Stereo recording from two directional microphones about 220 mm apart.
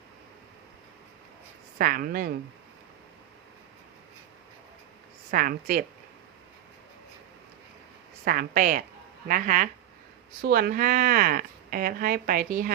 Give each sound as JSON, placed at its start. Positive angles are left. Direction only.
{"t": 1.8, "sound": "a woman's voice", "side_deg": -40}
{"t": 5.3, "sound": "a woman's voice", "side_deg": -40}
{"t": 8.2, "sound": "a woman's voice", "side_deg": -40}